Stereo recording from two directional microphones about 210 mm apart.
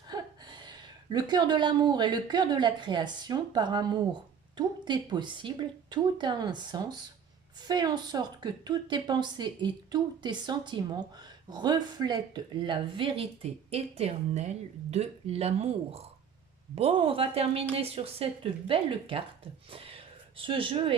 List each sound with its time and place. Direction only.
0.1 s a woman's voice: 20° right (ahead or behind)
19.7 s a sound: 25° right (ahead or behind)
20.4 s a woman's voice: 25° right (ahead or behind)